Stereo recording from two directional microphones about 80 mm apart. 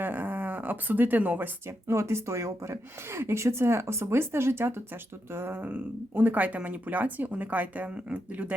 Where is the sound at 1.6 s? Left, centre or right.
Right.